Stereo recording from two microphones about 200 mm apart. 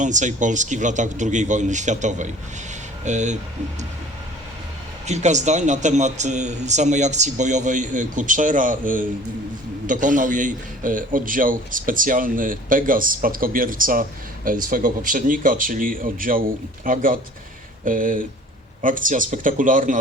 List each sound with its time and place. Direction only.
0.0 s speech: 40° right (ahead or behind)
5.0 s a man's voice: 35° right (ahead or behind)